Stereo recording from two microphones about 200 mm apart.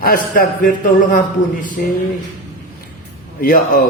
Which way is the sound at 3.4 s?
45° left (ahead or behind).